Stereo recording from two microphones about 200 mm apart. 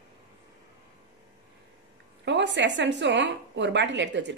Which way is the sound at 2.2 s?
60° right (ahead or behind).